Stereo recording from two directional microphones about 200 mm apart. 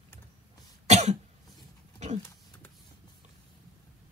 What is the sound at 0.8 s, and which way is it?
Cough, 35° right (ahead or behind).